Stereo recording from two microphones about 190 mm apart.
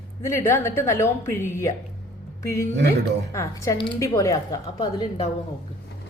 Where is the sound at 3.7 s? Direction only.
25° left (ahead or behind).